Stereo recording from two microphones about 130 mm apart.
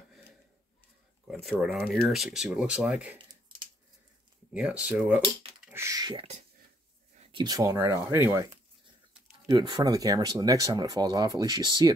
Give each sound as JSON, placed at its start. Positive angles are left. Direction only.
{"t": 1.4, "sound": "speech", "side_deg": 0}
{"t": 4.6, "sound": "speech", "side_deg": -10}
{"t": 5.2, "sound": "speech", "side_deg": -45}
{"t": 5.7, "sound": "speech", "side_deg": -25}
{"t": 6.1, "sound": "speech", "side_deg": -55}
{"t": 7.2, "sound": "speech", "side_deg": -35}
{"t": 9.5, "sound": "speech", "side_deg": -35}